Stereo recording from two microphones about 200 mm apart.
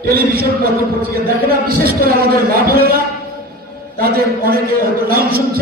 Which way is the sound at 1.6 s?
50° right (ahead or behind).